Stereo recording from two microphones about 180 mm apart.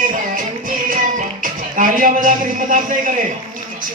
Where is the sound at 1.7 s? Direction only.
45° right (ahead or behind).